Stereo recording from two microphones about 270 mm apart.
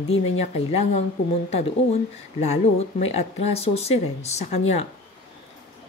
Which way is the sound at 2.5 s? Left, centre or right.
Left.